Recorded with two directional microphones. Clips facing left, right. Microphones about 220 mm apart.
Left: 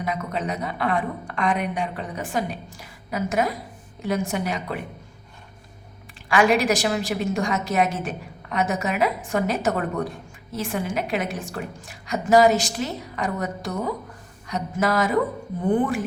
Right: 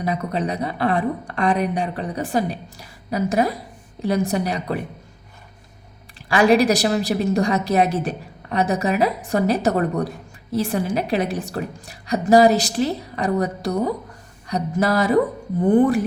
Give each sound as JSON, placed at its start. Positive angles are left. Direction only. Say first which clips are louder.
{"t": 0.0, "sound": "a woman's voice", "louder": "right 4 dB", "side_deg": -35}
{"t": 6.2, "sound": "a woman's voice", "louder": "right 4 dB", "side_deg": -35}